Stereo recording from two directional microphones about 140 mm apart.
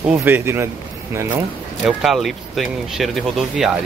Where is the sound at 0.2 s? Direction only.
15° right (ahead or behind).